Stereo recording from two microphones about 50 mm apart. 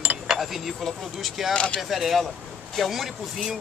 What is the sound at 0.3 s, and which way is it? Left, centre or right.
Speech, centre.